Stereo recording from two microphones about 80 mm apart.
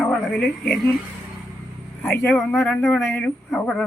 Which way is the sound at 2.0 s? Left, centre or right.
Left.